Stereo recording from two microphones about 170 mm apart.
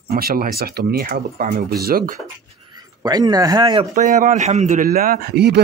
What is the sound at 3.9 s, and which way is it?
A man's voice, 45° right (ahead or behind).